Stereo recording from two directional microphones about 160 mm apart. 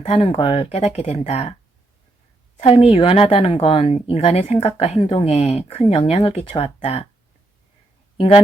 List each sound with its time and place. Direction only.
0.0 s speech: 35° left (ahead or behind)
2.6 s speech: 40° left (ahead or behind)